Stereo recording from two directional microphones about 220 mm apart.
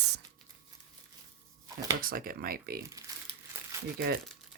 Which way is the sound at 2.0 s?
40° right (ahead or behind).